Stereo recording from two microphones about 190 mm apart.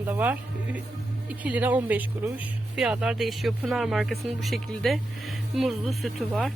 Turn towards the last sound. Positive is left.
turn(degrees=0)  # may be behind; listen again after turning